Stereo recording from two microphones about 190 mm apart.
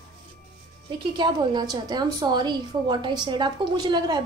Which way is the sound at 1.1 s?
25° right (ahead or behind).